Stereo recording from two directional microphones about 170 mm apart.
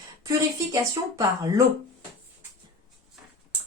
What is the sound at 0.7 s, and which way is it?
Speech, 20° right (ahead or behind).